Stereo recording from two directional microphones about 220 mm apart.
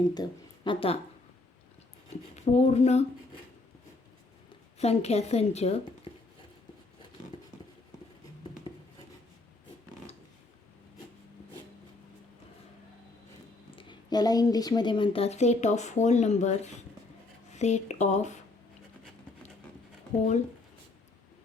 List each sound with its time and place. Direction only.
0.1 s speech: 20° left (ahead or behind)
2.0 s speech: 30° left (ahead or behind)
4.8 s speech: 30° left (ahead or behind)
13.7 s speech: 20° left (ahead or behind)